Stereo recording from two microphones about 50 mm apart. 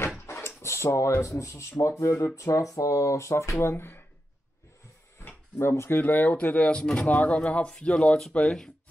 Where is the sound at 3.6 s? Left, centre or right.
Left.